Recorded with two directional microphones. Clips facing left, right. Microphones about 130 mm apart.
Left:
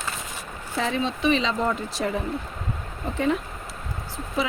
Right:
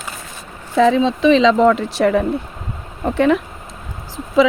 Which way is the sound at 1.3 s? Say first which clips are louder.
Right 12 dB; 90° right.